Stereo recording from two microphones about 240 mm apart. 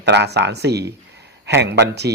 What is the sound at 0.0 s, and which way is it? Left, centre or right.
Speech, right.